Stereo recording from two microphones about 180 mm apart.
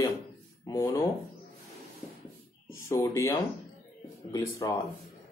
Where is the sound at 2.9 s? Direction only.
20° left (ahead or behind).